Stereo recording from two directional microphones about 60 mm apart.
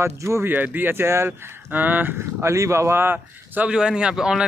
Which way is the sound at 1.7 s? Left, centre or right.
Right.